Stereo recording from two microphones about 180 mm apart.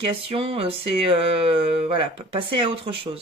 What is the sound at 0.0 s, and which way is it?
Speech, 30° right (ahead or behind).